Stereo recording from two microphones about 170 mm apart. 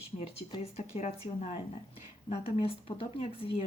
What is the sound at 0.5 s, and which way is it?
Speech, 40° left (ahead or behind).